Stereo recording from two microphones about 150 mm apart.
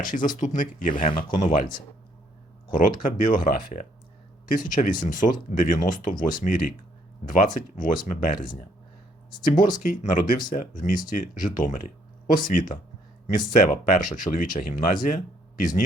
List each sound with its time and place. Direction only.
0.0 s speech: 60° left (ahead or behind)
2.7 s speech: 65° left (ahead or behind)